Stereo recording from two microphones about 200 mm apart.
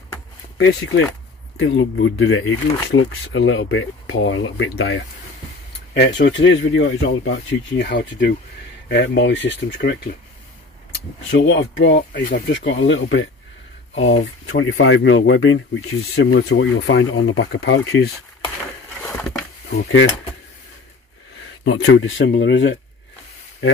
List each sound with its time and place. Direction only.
0.6 s speech: 80° left
1.6 s speech: 70° left (ahead or behind)
6.1 s speech: 65° left (ahead or behind)
11.3 s speech: 65° left (ahead or behind)
12.3 s speech: 45° left (ahead or behind)
12.5 s speech: 65° left (ahead or behind)
19.7 s speech: 60° left (ahead or behind)
21.6 s speech: 90° left; by 22.8 s 65° left (ahead or behind)